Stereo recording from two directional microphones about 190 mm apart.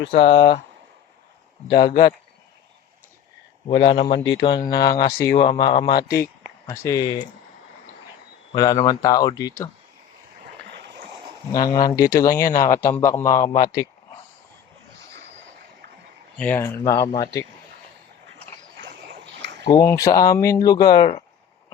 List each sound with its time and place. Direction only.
0.1 s speech: 30° left (ahead or behind)
1.6 s speech: 25° left (ahead or behind)
1.9 s speech: 50° left (ahead or behind)
3.7 s speech: 25° left (ahead or behind)
8.5 s speech: 20° left (ahead or behind)
11.7 s speech: 25° left (ahead or behind)
16.4 s speech: 10° left (ahead or behind)
16.9 s speech: 25° left (ahead or behind)
18.8 s a sound: 70° right (ahead or behind)
19.6 s speech: 15° left (ahead or behind)